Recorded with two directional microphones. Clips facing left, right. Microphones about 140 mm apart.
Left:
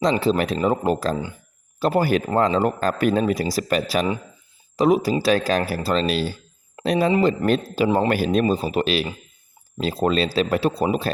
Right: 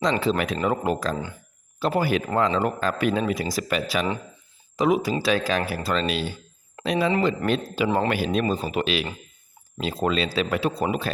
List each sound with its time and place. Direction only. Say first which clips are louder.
0.0 s a man's voice: left 3 dB; 35° left (ahead or behind)